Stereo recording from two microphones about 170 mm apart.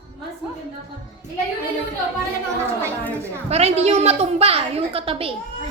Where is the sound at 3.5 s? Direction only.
40° right (ahead or behind).